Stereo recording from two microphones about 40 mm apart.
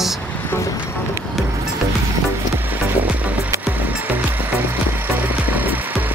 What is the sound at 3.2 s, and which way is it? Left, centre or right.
Music, right.